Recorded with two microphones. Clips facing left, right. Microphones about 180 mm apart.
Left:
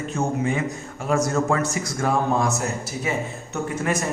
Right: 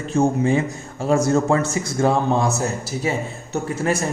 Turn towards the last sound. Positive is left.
turn(degrees=-30)  # may be behind; listen again after turning